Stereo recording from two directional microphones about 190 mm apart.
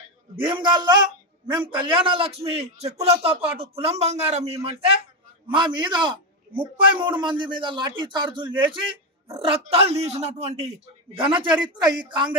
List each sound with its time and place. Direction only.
0.4 s a man's voice: 25° right (ahead or behind)